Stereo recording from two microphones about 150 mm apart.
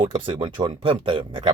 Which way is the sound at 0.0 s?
30° right (ahead or behind).